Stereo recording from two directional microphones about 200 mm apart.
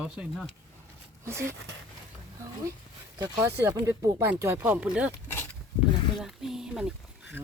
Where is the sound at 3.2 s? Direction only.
15° right (ahead or behind).